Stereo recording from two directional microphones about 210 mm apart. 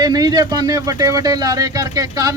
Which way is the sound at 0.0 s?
20° right (ahead or behind).